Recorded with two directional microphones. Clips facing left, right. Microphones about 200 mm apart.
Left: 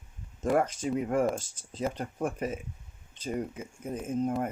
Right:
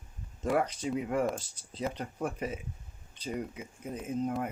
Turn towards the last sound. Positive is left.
turn(degrees=50)  # may be behind; listen again after turning